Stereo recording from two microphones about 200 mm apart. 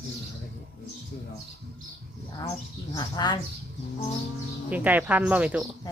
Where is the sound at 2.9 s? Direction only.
20° left (ahead or behind).